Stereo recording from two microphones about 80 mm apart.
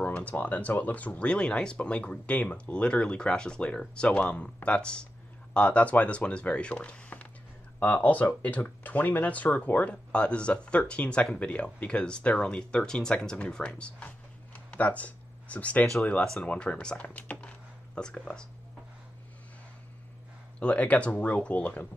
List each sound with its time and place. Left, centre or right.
0.0 s speech: centre
20.5 s speech: centre